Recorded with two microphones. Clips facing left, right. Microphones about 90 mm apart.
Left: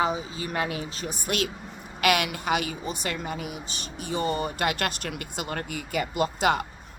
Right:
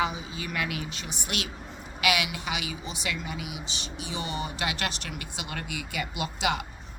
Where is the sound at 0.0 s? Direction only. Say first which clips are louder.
Left 3 dB; 35° left (ahead or behind).